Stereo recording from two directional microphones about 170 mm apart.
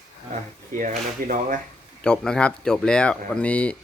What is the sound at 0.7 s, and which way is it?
Speech, 50° right (ahead or behind).